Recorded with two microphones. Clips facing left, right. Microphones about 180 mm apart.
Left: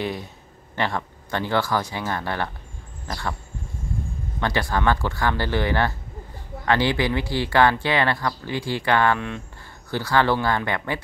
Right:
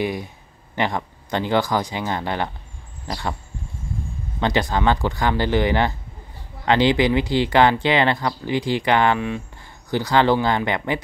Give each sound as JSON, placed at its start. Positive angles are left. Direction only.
{"t": 0.0, "sound": "speech", "side_deg": -10}
{"t": 4.4, "sound": "speech", "side_deg": -20}